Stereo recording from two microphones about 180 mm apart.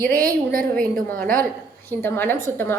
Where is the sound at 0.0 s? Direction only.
55° right (ahead or behind).